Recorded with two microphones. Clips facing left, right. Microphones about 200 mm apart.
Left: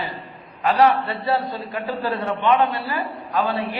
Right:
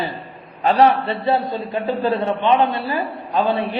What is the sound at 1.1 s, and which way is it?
A man's voice, 20° right (ahead or behind).